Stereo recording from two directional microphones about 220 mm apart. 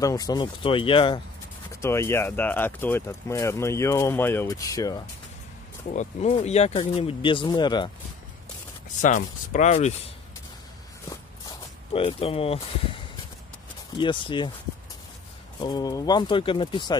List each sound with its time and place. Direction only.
0.0 s speech: 15° left (ahead or behind)
1.7 s speech: 10° left (ahead or behind)
5.9 s speech: 30° left (ahead or behind)
9.0 s speech: 35° left (ahead or behind)
11.9 s speech: 25° left (ahead or behind)
15.6 s speech: 15° left (ahead or behind)